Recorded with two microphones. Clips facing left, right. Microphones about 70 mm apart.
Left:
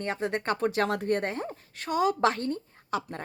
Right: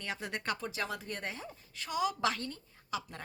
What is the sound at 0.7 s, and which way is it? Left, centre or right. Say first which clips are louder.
A woman's voice: left 12 dB; left.